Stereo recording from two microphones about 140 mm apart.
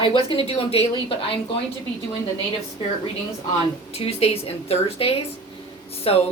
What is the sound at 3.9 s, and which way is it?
A woman's voice, 45° left (ahead or behind).